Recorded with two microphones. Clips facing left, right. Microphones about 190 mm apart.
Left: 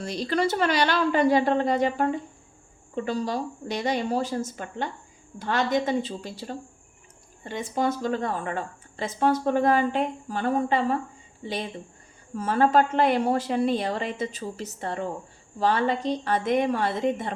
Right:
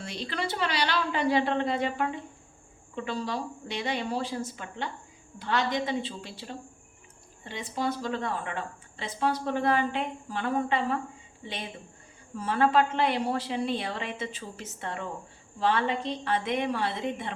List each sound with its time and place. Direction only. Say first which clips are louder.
0.0 s speech: left 8 dB; 40° left (ahead or behind)
12.4 s speech: left 3 dB; 40° left (ahead or behind)